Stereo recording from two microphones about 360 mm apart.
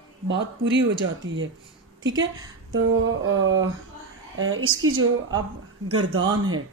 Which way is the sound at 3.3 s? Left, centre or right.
Right.